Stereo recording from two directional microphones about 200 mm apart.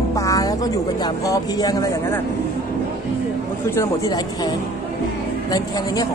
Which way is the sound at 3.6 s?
15° left (ahead or behind).